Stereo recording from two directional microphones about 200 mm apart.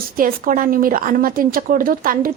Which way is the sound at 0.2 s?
45° right (ahead or behind).